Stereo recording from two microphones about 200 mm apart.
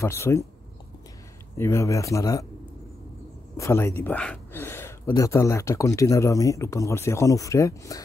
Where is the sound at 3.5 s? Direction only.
15° left (ahead or behind).